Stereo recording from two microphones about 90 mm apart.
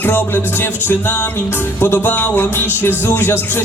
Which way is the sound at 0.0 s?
20° left (ahead or behind).